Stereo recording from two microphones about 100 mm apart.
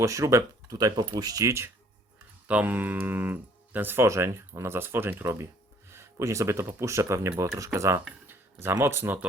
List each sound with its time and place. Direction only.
0.0 s speech: 30° right (ahead or behind)
2.5 s speech: 15° right (ahead or behind); by 7.9 s 30° right (ahead or behind)
8.3 s a sound: 25° right (ahead or behind)
8.8 s speech: 25° right (ahead or behind)